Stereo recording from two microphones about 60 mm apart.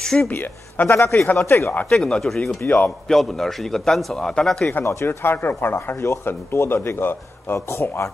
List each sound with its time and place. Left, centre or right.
0.0 s speech: centre
0.3 s speech: left
0.8 s a man's voice: left
1.9 s a man's voice: centre
5.0 s a man's voice: left